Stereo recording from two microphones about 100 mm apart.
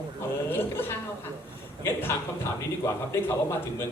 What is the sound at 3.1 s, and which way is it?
Speech, 25° left (ahead or behind).